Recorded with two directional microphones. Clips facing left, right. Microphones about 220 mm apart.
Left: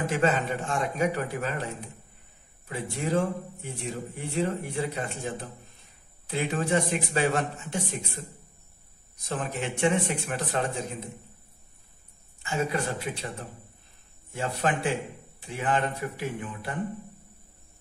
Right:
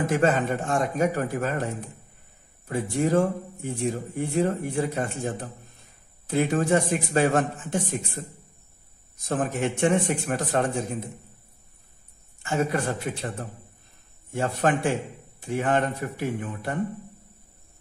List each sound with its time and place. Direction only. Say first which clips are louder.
0.0 s speech: right 3 dB; 45° right (ahead or behind)
9.2 s speech: right 6 dB; 45° right (ahead or behind)
12.4 s speech: right 3 dB; 50° right (ahead or behind)
14.3 s speech: right 4 dB; 45° right (ahead or behind)